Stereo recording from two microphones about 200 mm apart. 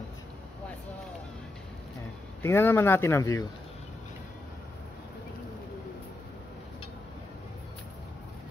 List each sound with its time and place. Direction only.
2.4 s speech: 10° left (ahead or behind)